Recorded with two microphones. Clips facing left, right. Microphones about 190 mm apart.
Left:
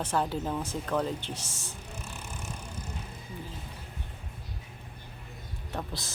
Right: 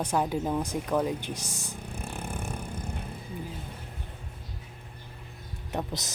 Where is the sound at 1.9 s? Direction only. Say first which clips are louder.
Right 7 dB; 55° right (ahead or behind).